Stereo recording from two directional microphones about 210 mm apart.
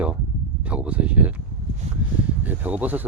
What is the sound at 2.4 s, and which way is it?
Speech, 10° right (ahead or behind).